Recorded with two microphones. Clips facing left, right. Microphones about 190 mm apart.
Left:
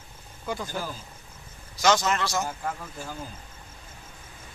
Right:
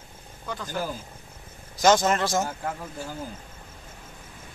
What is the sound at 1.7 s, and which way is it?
Speech, 50° right (ahead or behind).